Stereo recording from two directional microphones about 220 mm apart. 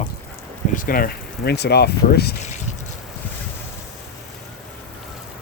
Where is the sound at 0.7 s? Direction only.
40° left (ahead or behind).